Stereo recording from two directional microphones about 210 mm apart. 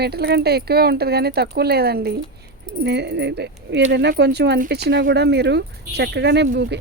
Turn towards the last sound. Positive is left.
turn(degrees=-55)  # may be behind; listen again after turning